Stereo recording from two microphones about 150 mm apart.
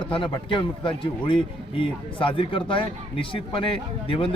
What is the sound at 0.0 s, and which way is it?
Speech, 35° left (ahead or behind).